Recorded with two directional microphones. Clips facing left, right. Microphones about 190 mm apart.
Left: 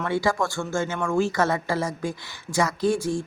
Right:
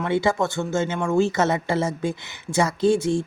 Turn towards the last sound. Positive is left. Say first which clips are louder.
# right 4 dB
turn(degrees=-25)  # may be behind; listen again after turning